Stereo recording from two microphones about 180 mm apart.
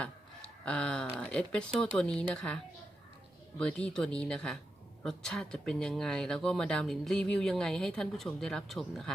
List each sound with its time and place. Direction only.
0.6 s speech: 5° left (ahead or behind)
3.6 s speech: 5° left (ahead or behind)